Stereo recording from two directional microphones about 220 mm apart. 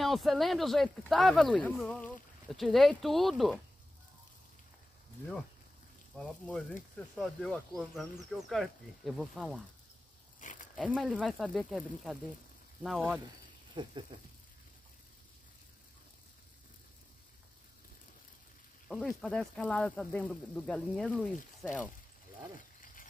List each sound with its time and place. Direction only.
0.0 s speech: centre (ahead or behind)
6.1 s speech: 5° left (ahead or behind)
10.4 s a sound: 35° left (ahead or behind)
10.9 s speech: 5° right (ahead or behind)
13.8 s speech: 20° right (ahead or behind)
18.9 s speech: centre (ahead or behind)